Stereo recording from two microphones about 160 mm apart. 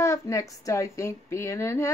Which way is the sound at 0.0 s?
20° left (ahead or behind).